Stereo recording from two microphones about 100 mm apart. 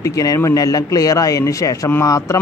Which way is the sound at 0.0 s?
35° left (ahead or behind).